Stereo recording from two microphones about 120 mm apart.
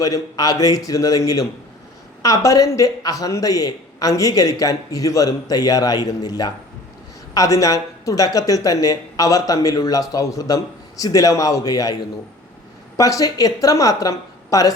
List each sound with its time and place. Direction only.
0.0 s a man's voice: 30° left (ahead or behind)
13.0 s speech: 30° left (ahead or behind)